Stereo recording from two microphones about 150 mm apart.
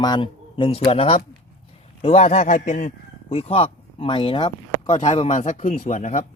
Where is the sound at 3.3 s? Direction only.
40° left (ahead or behind).